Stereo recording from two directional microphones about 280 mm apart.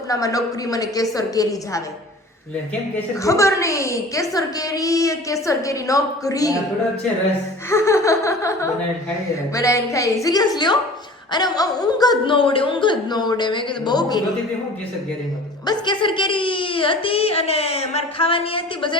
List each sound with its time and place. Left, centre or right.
0.1 s a woman's voice: centre
3.2 s a woman's voice: centre
7.7 s laughter: centre
9.6 s a woman's voice: centre
15.6 s a woman's voice: centre